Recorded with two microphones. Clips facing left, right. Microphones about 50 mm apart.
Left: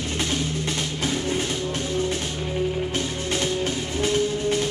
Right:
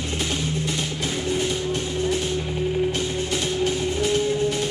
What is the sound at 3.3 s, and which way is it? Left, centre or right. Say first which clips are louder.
Music: even; left.